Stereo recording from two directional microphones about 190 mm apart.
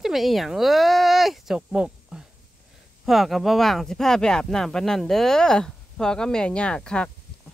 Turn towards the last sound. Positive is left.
turn(degrees=5)  # may be behind; listen again after turning